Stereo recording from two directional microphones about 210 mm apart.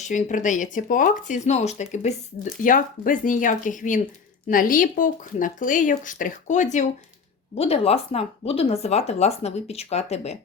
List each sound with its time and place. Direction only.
0.0 s speech: 35° left (ahead or behind)